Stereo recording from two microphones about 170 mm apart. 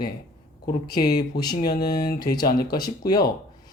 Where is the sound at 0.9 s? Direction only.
65° left (ahead or behind).